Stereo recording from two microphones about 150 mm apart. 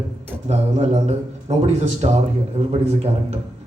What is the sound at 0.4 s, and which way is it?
A man's voice, 45° right (ahead or behind).